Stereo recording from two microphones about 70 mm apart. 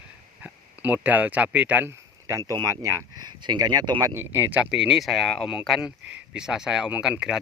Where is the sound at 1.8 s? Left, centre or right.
Right.